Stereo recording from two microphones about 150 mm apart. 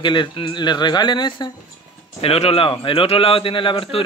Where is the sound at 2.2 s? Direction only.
40° left (ahead or behind).